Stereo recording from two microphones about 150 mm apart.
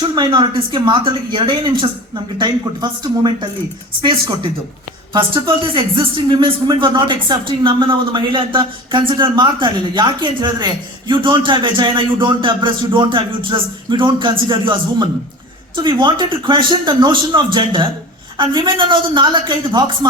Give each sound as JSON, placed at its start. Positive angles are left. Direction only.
{"t": 0.2, "sound": "speech", "side_deg": -30}
{"t": 5.1, "sound": "speech", "side_deg": -35}